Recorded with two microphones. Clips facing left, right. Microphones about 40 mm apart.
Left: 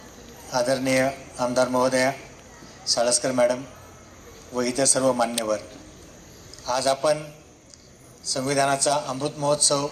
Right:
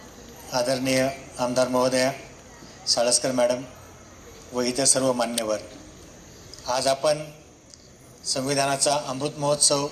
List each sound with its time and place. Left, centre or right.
0.4 s a man's voice: left
6.7 s a man's voice: left